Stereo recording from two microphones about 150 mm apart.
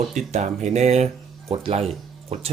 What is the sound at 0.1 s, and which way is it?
Speech, 55° right (ahead or behind).